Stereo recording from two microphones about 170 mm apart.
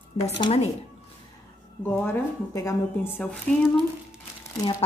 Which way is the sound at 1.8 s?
15° left (ahead or behind).